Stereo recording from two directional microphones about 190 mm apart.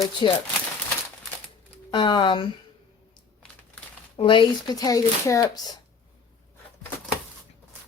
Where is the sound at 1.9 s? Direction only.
25° left (ahead or behind).